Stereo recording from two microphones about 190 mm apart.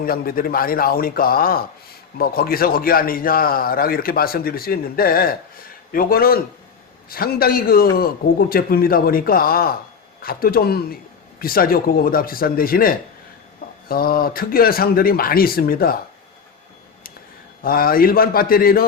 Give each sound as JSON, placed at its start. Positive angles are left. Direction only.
{"t": 0.0, "sound": "a man's voice", "side_deg": 50}
{"t": 17.6, "sound": "a man's voice", "side_deg": 50}